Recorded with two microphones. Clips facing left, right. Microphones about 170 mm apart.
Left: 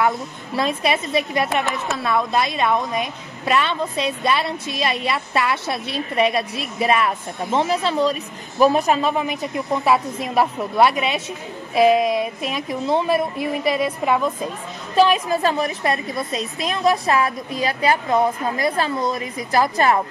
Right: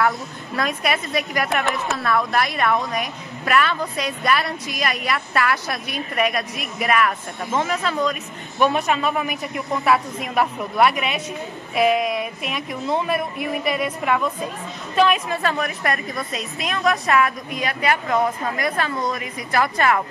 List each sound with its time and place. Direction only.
0.6 s a woman's voice: 25° left (ahead or behind)
10.2 s a woman's voice: 30° left (ahead or behind)